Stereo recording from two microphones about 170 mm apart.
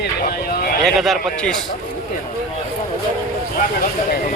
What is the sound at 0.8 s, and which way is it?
Speech, centre (ahead or behind).